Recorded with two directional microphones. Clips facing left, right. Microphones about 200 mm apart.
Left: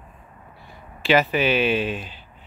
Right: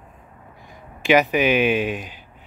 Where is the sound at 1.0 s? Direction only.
15° right (ahead or behind).